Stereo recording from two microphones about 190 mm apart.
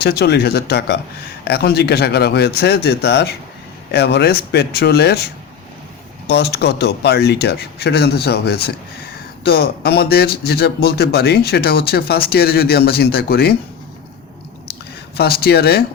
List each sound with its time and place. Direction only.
0.0 s a man's voice: 55° left (ahead or behind)
6.2 s a man's voice: 60° left (ahead or behind)
15.2 s a man's voice: 55° left (ahead or behind)